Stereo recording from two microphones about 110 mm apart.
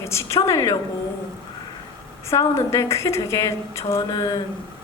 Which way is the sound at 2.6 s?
25° left (ahead or behind).